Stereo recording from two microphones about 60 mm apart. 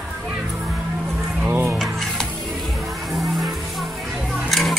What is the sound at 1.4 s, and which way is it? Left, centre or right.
Music, right.